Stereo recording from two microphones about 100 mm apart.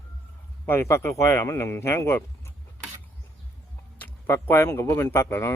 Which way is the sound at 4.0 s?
20° left (ahead or behind).